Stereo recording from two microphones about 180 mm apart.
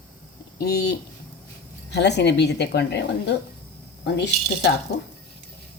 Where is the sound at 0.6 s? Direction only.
65° left (ahead or behind).